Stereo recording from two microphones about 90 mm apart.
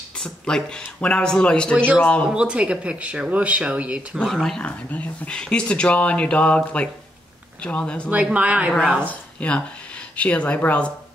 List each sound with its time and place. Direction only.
0.2 s speech: 10° left (ahead or behind)
2.2 s speech: 10° right (ahead or behind)
4.2 s speech: 5° left (ahead or behind)
8.1 s speech: 15° right (ahead or behind)
9.0 s speech: 15° left (ahead or behind)